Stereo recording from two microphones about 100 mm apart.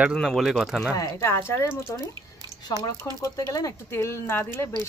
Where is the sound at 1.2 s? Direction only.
25° left (ahead or behind).